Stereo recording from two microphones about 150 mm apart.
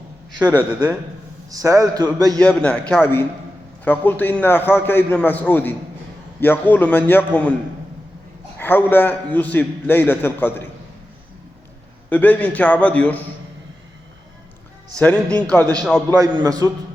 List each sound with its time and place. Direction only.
0.3 s a man's voice: 10° right (ahead or behind); by 2.4 s 25° right (ahead or behind)
2.4 s a man's voice: 5° left (ahead or behind)
8.5 s a man's voice: 15° left (ahead or behind)
12.0 s a man's voice: 10° left (ahead or behind)
14.9 s a man's voice: 10° left (ahead or behind)
16.0 s a man's voice: 25° right (ahead or behind)